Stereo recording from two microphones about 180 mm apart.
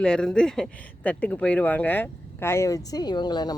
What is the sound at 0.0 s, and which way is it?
Speech, 5° left (ahead or behind).